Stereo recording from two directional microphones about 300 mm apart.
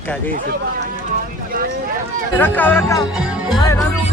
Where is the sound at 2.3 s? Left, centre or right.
Centre.